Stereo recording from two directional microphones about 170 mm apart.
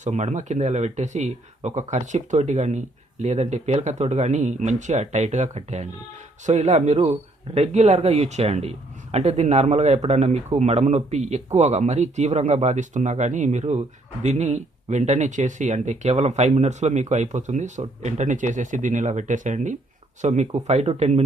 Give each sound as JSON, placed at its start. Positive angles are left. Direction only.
{"t": 0.0, "sound": "a man's voice", "side_deg": -45}